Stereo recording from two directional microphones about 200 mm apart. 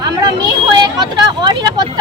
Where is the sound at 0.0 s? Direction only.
20° right (ahead or behind).